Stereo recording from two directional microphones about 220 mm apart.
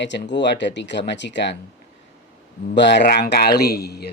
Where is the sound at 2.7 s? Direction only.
55° left (ahead or behind).